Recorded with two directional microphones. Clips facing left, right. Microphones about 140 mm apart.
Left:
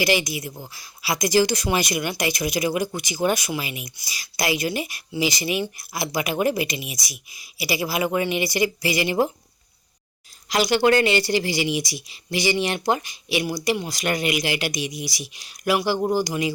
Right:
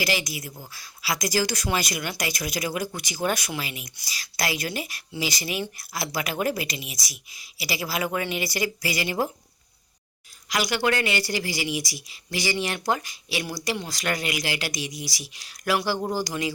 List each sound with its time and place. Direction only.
0.0 s speech: 20° left (ahead or behind)
10.5 s speech: 30° left (ahead or behind)